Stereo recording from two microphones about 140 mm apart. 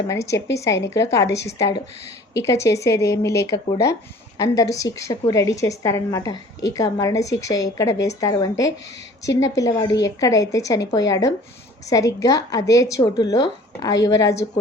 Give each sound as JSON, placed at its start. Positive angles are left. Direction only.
{"t": 0.1, "sound": "a woman's voice", "side_deg": 20}